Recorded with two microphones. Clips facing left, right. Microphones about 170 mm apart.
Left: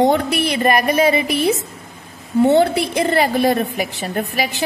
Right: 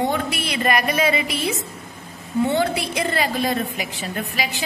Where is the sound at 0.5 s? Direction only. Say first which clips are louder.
Left 4 dB; 35° left (ahead or behind).